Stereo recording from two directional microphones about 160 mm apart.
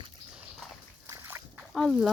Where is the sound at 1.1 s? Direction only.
15° right (ahead or behind).